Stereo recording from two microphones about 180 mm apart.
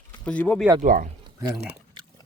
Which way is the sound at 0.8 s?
50° right (ahead or behind).